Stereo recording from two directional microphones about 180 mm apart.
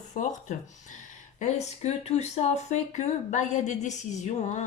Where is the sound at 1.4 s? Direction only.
40° left (ahead or behind).